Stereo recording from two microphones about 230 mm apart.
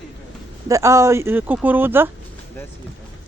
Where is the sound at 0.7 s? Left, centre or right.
Centre.